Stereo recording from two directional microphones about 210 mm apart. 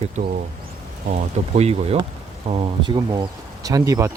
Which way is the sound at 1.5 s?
30° right (ahead or behind).